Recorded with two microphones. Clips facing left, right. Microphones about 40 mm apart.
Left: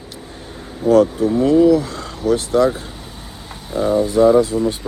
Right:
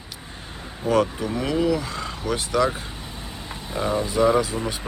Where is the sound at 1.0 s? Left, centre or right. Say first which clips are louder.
Left 10 dB; right.